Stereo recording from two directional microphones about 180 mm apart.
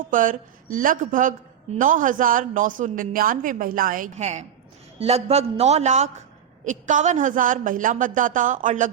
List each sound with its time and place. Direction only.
0.1 s a man's voice: 45° right (ahead or behind)